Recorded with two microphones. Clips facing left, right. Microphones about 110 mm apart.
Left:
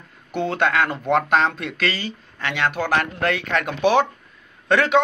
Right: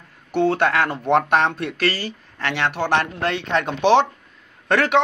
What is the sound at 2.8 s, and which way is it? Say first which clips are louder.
Speech: right 2 dB; 30° right (ahead or behind).